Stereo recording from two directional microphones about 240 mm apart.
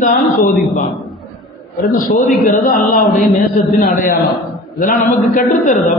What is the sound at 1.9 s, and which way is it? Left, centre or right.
Speech, centre.